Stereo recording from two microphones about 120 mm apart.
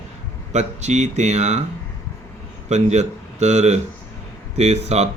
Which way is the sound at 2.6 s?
70° right (ahead or behind).